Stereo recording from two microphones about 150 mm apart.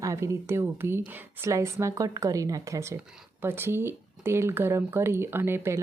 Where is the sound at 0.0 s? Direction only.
20° right (ahead or behind).